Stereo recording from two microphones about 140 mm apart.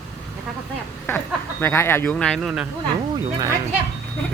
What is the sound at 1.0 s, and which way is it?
Speech, 15° left (ahead or behind).